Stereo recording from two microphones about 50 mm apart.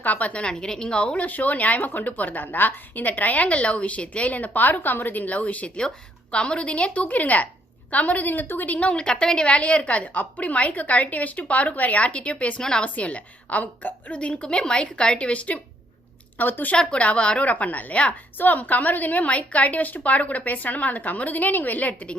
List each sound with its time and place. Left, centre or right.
0.0 s a woman's voice: left
0.4 s a woman's voice: centre
16.4 s a woman's voice: left
16.7 s a woman's voice: centre